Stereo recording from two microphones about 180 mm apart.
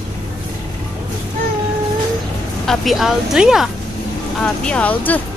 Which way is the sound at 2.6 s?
Centre (ahead or behind).